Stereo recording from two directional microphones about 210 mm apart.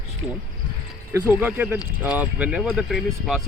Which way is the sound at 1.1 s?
10° right (ahead or behind).